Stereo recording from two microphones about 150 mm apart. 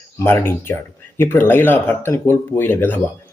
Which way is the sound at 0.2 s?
15° left (ahead or behind).